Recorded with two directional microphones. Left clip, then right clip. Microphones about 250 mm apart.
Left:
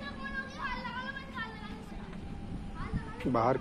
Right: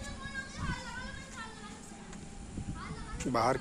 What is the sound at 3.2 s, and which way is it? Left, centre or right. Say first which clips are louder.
Speech: left 1 dB; centre.